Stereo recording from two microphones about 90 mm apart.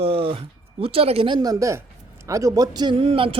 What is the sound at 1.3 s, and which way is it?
A man's voice, 45° right (ahead or behind).